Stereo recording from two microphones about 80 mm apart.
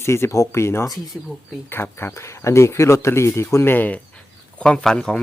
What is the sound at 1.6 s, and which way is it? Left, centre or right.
Speech, left.